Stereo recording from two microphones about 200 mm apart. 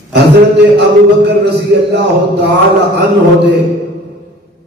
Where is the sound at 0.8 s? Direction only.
55° right (ahead or behind).